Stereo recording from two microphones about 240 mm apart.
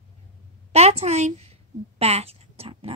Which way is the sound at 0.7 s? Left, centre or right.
Right.